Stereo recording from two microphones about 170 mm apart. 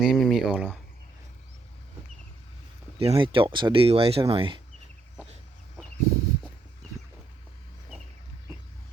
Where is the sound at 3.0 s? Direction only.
30° right (ahead or behind).